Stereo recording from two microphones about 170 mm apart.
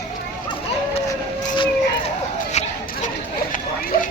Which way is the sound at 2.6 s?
40° left (ahead or behind).